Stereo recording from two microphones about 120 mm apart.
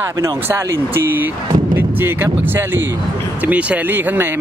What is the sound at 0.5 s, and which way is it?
Speech, 20° right (ahead or behind).